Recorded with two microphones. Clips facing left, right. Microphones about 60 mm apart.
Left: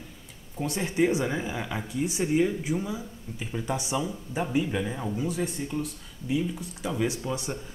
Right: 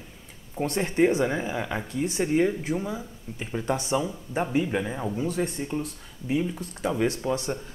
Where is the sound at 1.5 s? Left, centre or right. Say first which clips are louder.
Right 3 dB; centre.